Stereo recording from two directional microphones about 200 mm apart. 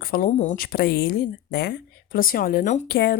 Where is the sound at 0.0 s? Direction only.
45° left (ahead or behind).